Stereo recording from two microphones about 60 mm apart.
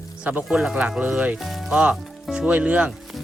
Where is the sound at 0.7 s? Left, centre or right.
Right.